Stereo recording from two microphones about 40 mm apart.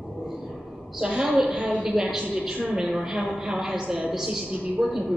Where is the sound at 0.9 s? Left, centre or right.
Centre.